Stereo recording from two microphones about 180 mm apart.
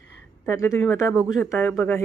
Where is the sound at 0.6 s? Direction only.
20° left (ahead or behind).